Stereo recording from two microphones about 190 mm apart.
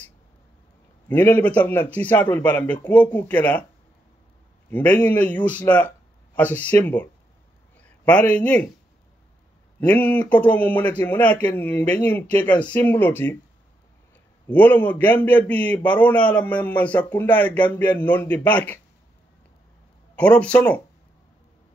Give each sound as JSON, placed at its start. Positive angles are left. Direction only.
{"t": 1.0, "sound": "a man's voice", "side_deg": 10}
{"t": 4.6, "sound": "a man's voice", "side_deg": 10}
{"t": 9.8, "sound": "a man's voice", "side_deg": 10}
{"t": 14.5, "sound": "a man's voice", "side_deg": 10}
{"t": 20.2, "sound": "a man's voice", "side_deg": 5}